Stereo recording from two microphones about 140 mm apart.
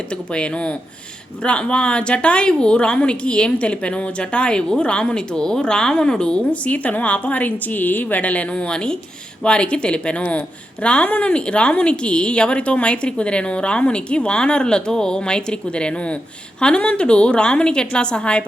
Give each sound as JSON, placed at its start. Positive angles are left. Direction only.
{"t": 0.3, "sound": "speech", "side_deg": 5}